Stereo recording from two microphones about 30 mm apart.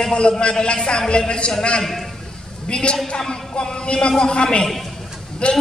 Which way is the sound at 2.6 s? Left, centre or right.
Left.